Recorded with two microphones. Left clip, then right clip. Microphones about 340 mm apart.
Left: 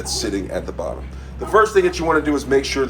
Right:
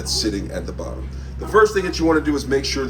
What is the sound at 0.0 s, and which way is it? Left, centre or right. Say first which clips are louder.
Speech: right 1 dB; centre.